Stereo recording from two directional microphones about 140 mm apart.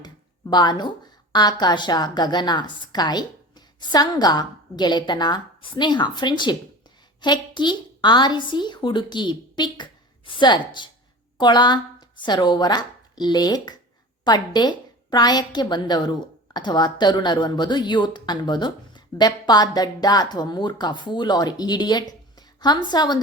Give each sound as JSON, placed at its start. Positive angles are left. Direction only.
{"t": 0.0, "sound": "a woman's voice", "side_deg": 30}